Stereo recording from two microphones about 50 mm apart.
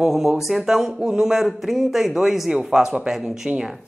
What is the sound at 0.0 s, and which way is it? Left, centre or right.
A man's voice, centre.